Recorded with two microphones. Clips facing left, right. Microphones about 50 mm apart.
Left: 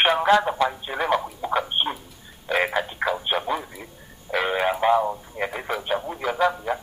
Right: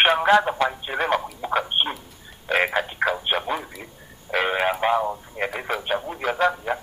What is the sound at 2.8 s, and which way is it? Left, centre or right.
Radio, centre.